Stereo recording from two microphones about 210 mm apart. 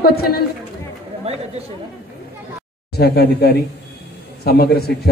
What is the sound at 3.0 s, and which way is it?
A woman's voice, 50° left (ahead or behind).